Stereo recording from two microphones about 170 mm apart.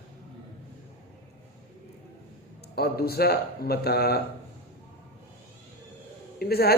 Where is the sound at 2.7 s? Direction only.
70° left (ahead or behind).